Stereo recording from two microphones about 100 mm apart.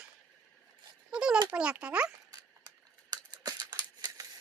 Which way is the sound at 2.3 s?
40° right (ahead or behind).